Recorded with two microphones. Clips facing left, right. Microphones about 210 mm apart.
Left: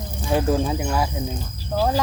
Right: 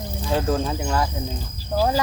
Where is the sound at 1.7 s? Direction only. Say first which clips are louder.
Even; 5° right (ahead or behind).